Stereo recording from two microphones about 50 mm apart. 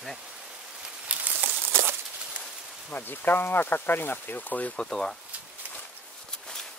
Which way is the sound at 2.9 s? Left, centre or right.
Left.